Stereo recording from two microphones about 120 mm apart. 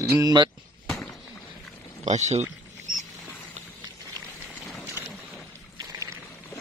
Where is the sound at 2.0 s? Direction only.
75° right (ahead or behind).